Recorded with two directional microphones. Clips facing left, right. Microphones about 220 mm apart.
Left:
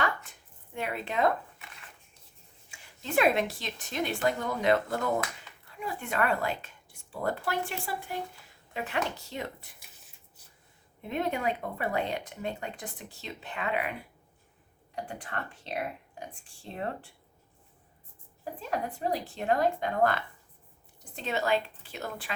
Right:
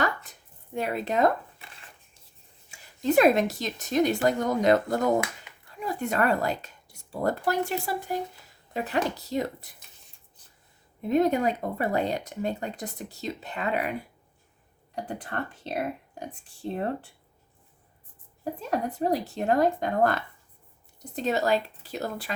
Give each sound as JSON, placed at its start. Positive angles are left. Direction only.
{"t": 0.0, "sound": "a sound", "side_deg": -40}
{"t": 2.6, "sound": "speech", "side_deg": -40}
{"t": 5.5, "sound": "a sound", "side_deg": -15}
{"t": 5.8, "sound": "speech", "side_deg": -40}
{"t": 11.0, "sound": "speech", "side_deg": -40}
{"t": 14.9, "sound": "speech", "side_deg": -40}
{"t": 18.7, "sound": "speech", "side_deg": -40}